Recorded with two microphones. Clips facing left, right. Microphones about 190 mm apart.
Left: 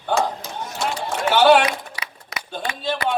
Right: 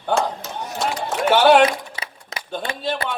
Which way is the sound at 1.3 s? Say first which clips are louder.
Right 1 dB; 50° right (ahead or behind).